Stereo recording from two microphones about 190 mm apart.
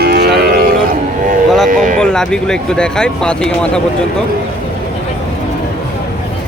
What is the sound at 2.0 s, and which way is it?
Speech, 5° left (ahead or behind).